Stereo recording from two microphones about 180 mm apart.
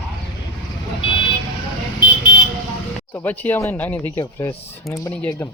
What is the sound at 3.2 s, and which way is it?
Speech, 10° left (ahead or behind).